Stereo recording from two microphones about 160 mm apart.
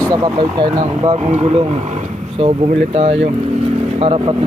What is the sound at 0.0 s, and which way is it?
Speech, 25° right (ahead or behind).